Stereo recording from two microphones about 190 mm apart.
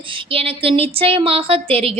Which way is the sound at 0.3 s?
30° right (ahead or behind).